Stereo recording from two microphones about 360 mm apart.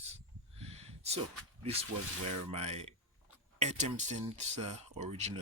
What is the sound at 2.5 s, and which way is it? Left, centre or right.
Speech, centre.